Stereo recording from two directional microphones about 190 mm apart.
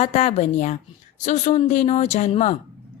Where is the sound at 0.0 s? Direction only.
35° left (ahead or behind).